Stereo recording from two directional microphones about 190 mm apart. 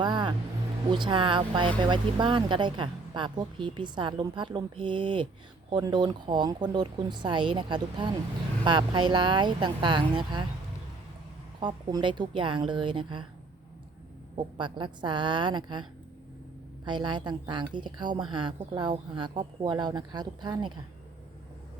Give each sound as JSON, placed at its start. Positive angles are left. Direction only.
{"t": 0.0, "sound": "vehicle", "side_deg": -25}
{"t": 0.9, "sound": "a woman's voice", "side_deg": -25}
{"t": 11.6, "sound": "a woman's voice", "side_deg": -20}
{"t": 14.3, "sound": "a woman's voice", "side_deg": -25}
{"t": 16.8, "sound": "a woman's voice", "side_deg": -25}